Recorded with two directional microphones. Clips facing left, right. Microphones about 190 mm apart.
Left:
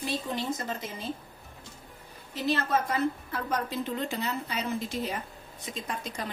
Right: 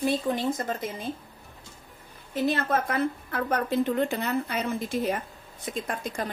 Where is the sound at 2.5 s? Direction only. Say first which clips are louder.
Even; 55° right (ahead or behind).